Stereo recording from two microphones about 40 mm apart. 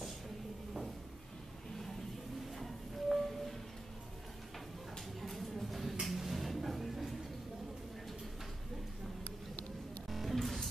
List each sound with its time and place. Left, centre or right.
2.6 s music: centre
5.2 s a sound: centre
10.0 s music: centre